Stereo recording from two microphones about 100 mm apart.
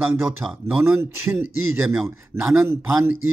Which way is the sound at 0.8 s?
20° right (ahead or behind).